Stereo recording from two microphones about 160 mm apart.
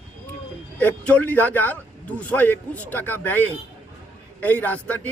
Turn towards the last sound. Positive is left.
turn(degrees=10)  # may be behind; listen again after turning